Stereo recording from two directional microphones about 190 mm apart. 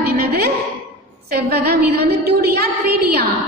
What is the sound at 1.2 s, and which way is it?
A woman's voice, 55° right (ahead or behind).